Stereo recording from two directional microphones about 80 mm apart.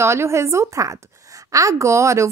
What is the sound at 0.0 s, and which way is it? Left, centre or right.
A woman's voice, right.